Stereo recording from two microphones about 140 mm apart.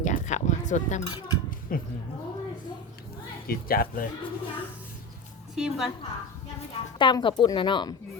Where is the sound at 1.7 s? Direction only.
80° left.